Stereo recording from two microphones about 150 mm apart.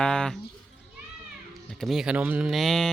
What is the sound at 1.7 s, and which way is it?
Speech, centre (ahead or behind).